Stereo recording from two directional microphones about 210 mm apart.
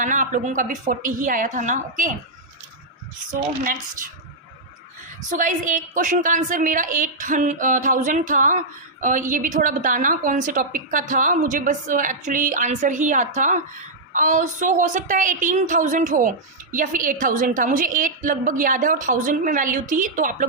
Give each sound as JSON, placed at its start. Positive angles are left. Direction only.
{"t": 0.0, "sound": "a woman's voice", "side_deg": -35}
{"t": 3.6, "sound": "a woman's voice", "side_deg": -40}
{"t": 5.3, "sound": "a woman's voice", "side_deg": -40}